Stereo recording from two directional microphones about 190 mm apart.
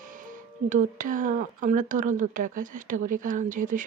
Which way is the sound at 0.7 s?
45° right (ahead or behind).